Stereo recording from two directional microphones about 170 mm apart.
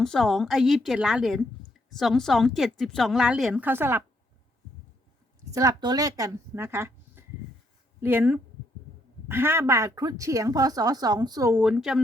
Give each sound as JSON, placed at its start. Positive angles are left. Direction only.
{"t": 0.0, "sound": "a woman's voice", "side_deg": 0}
{"t": 5.5, "sound": "a woman's voice", "side_deg": -20}
{"t": 11.5, "sound": "a woman's voice", "side_deg": -5}